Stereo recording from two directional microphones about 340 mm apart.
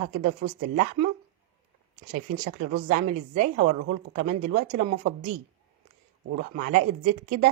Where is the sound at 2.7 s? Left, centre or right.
Right.